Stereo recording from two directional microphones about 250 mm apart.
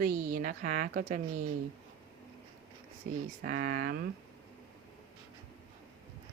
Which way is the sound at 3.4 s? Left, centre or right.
Right.